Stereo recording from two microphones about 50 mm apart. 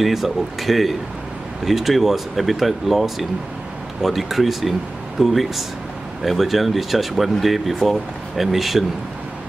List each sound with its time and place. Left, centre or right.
0.0 s speech: centre